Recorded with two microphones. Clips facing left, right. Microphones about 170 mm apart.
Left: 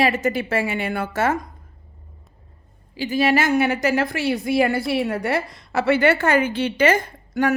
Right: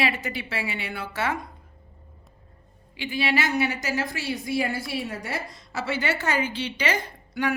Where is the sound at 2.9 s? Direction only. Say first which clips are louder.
Left 7 dB; 40° left (ahead or behind).